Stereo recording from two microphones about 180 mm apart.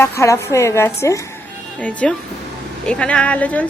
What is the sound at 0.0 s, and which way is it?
Speech, 15° left (ahead or behind).